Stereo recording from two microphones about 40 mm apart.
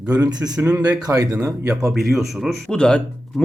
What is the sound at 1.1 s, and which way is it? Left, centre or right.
Speech, right.